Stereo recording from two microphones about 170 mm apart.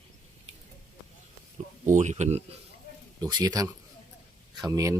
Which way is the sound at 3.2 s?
25° right (ahead or behind).